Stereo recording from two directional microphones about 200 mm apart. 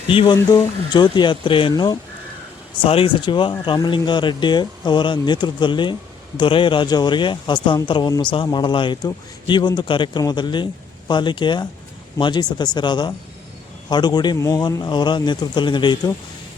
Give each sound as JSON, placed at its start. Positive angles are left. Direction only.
{"t": 0.1, "sound": "speech", "side_deg": 25}